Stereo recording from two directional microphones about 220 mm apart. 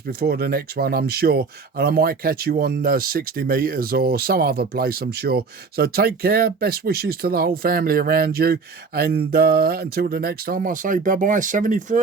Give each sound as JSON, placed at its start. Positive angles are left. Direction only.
{"t": 0.2, "sound": "speech", "side_deg": -45}